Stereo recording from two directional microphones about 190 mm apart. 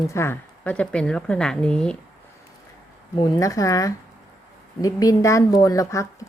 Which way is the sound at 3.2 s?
15° left (ahead or behind).